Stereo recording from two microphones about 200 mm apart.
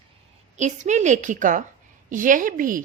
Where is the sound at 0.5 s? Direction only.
35° right (ahead or behind).